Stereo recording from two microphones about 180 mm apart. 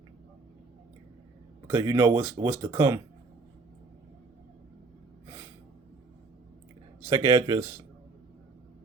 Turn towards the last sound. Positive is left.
turn(degrees=-15)  # may be behind; listen again after turning